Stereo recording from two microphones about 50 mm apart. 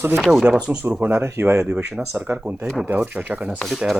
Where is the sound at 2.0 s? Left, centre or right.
Right.